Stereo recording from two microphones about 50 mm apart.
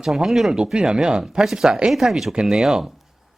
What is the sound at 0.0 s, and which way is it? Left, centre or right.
Speech, centre.